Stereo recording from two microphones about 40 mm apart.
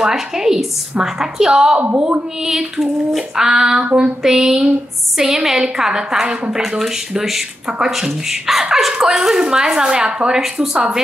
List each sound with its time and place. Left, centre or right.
0.0 s speech: centre
4.2 s speech: centre
6.6 s speech: centre; by 10.4 s right